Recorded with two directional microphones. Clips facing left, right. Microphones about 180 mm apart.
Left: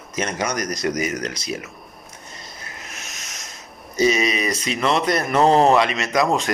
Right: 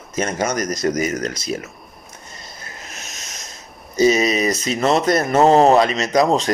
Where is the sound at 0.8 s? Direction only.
45° right (ahead or behind).